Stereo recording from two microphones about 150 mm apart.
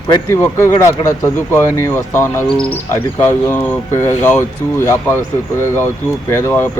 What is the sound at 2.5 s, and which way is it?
Speech, 5° left (ahead or behind).